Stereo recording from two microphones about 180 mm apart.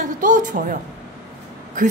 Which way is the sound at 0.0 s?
45° right (ahead or behind).